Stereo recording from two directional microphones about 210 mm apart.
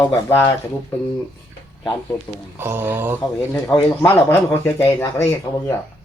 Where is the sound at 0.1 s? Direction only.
10° left (ahead or behind).